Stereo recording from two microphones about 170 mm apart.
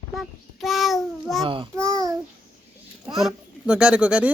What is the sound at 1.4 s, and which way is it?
Speech, 30° right (ahead or behind).